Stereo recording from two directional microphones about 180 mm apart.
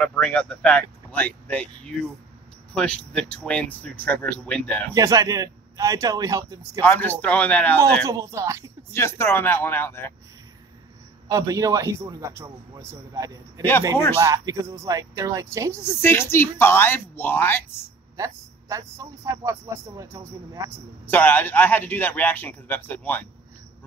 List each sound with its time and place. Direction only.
0.0 s speech: 5° left (ahead or behind)
4.9 s a man's voice: 20° right (ahead or behind)
6.8 s speech: 10° left (ahead or behind)
8.1 s a man's voice: 15° right (ahead or behind)
8.9 s speech: 15° left (ahead or behind)
11.2 s a man's voice: 20° right (ahead or behind)
16.0 s speech: 15° left (ahead or behind)
18.1 s a man's voice: 20° right (ahead or behind)
21.1 s speech: 10° left (ahead or behind)